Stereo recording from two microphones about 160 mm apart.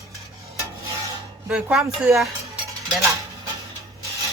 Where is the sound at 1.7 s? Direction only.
Centre (ahead or behind).